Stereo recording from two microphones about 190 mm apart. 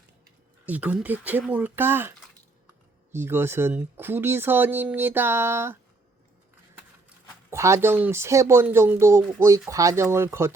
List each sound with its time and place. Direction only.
0.7 s speech: 5° right (ahead or behind)
7.5 s speech: 15° right (ahead or behind)